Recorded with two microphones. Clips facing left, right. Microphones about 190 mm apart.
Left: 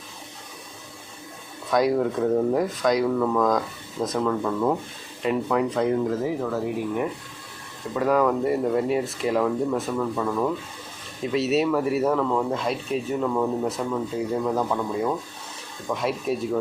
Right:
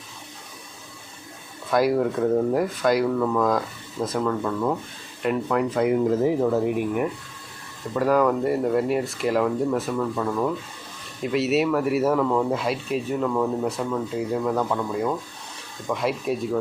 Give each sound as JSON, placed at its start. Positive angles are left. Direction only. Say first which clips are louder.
{"t": 1.7, "sound": "speech", "louder": "right 1 dB", "side_deg": 0}
{"t": 6.1, "sound": "speech", "louder": "right 5 dB", "side_deg": -25}
{"t": 7.9, "sound": "speech", "louder": "right 1 dB", "side_deg": 0}